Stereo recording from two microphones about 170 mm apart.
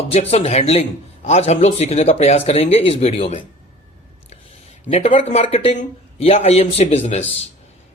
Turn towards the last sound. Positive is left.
turn(degrees=40)  # may be behind; listen again after turning